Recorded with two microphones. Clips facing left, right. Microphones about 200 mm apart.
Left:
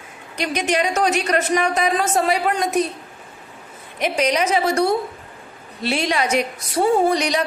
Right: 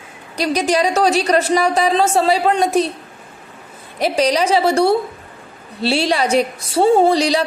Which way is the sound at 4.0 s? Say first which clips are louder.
Right 4 dB; 35° right (ahead or behind).